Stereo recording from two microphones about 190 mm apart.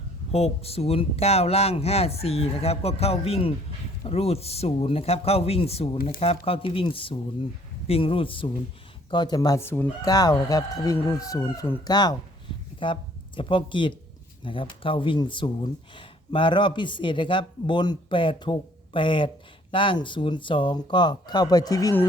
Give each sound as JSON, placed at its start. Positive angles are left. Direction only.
{"t": 0.3, "sound": "speech", "side_deg": 35}